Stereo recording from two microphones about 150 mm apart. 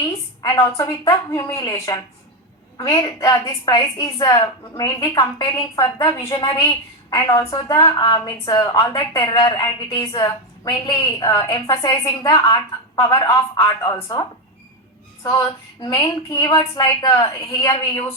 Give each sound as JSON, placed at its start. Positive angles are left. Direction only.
{"t": 0.1, "sound": "a sound", "side_deg": 20}
{"t": 0.8, "sound": "a woman's voice", "side_deg": 25}
{"t": 15.8, "sound": "a woman's voice", "side_deg": 25}
{"t": 16.5, "sound": "a woman's voice", "side_deg": 35}